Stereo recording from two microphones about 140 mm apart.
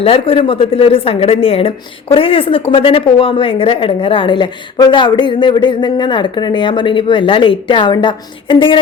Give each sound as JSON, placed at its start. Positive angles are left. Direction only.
{"t": 0.0, "sound": "a woman's voice", "side_deg": 40}